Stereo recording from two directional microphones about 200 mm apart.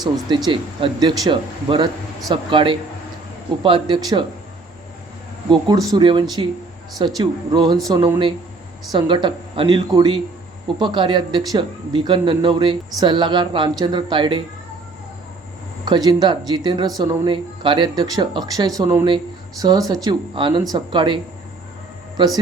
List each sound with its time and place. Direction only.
0.0 s speech: 20° right (ahead or behind)
5.5 s speech: 20° right (ahead or behind)
15.8 s speech: 20° right (ahead or behind)
22.2 s speech: 20° right (ahead or behind)